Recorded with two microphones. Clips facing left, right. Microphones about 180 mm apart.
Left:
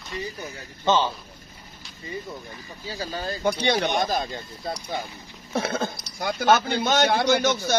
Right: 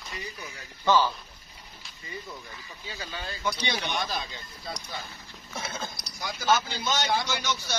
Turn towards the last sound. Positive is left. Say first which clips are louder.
# left 10 dB
turn(degrees=50)  # may be behind; listen again after turning